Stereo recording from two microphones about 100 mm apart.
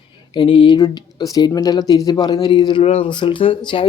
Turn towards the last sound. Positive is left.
turn(degrees=60)  # may be behind; listen again after turning